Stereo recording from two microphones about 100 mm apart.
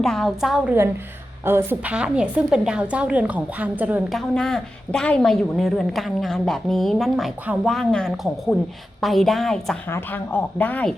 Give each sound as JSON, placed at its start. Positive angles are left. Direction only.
{"t": 0.0, "sound": "a woman's voice", "side_deg": 5}
{"t": 1.5, "sound": "a woman's voice", "side_deg": -25}
{"t": 1.9, "sound": "a woman's voice", "side_deg": -10}
{"t": 4.1, "sound": "a woman's voice", "side_deg": 5}
{"t": 9.9, "sound": "speech", "side_deg": 20}